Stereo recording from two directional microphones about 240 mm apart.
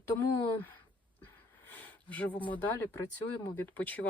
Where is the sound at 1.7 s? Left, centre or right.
Centre.